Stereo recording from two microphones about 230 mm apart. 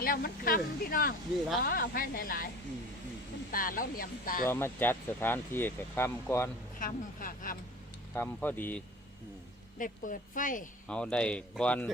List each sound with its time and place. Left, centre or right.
0.0 s speech: left
3.5 s speech: left
4.4 s speech: centre
6.7 s speech: left
8.1 s speech: centre
9.7 s speech: left
10.8 s speech: centre